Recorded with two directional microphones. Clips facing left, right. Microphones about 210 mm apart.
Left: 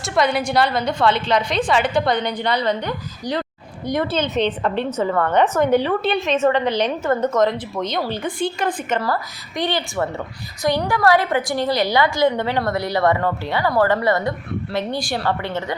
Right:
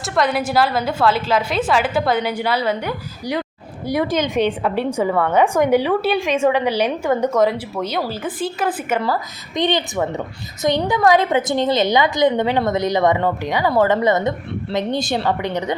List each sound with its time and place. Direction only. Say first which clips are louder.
0.0 s a woman's voice: even; centre (ahead or behind)
9.0 s a woman's voice: right 2 dB; 15° right (ahead or behind)